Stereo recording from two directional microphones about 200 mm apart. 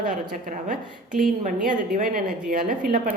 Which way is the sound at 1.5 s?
40° right (ahead or behind).